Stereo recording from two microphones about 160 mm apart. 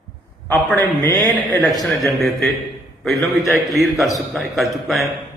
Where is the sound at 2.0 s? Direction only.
Centre (ahead or behind).